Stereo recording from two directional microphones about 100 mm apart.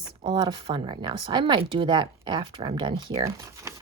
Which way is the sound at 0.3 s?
55° right (ahead or behind).